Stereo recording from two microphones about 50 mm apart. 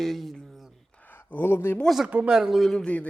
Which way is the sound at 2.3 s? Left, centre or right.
Centre.